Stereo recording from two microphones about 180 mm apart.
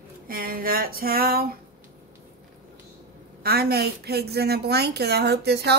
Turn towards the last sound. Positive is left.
turn(degrees=-65)  # may be behind; listen again after turning